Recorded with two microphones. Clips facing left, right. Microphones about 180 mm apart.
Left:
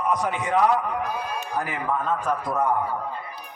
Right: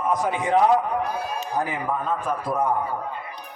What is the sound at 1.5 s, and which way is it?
Speech, 20° right (ahead or behind).